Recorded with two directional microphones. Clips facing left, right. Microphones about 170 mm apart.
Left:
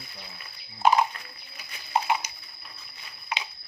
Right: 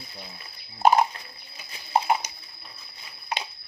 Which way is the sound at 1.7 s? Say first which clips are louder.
Right 3 dB; 30° right (ahead or behind).